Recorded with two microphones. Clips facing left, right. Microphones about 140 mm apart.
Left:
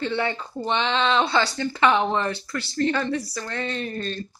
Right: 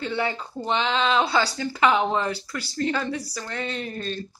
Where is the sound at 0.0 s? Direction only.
5° right (ahead or behind).